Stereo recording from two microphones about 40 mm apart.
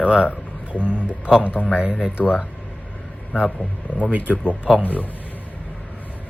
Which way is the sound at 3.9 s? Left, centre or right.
Left.